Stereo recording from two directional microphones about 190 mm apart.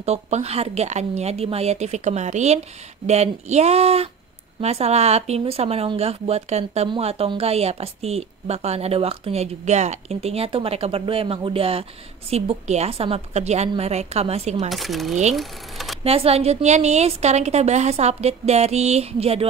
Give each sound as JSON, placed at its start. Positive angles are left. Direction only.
{"t": 0.0, "sound": "speech", "side_deg": -35}
{"t": 14.7, "sound": "speech", "side_deg": 0}
{"t": 15.3, "sound": "sewing machine", "side_deg": 0}
{"t": 16.0, "sound": "speech", "side_deg": -30}